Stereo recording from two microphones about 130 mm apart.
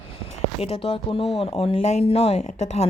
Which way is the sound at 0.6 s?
50° left (ahead or behind).